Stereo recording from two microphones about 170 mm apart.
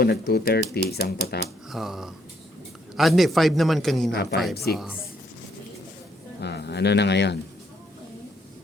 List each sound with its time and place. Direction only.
0.0 s speech: 70° left (ahead or behind)
1.7 s a man's voice: centre (ahead or behind)
4.1 s a woman's voice: 65° left (ahead or behind)
4.7 s a man's voice: centre (ahead or behind)
6.4 s speech: 75° left (ahead or behind)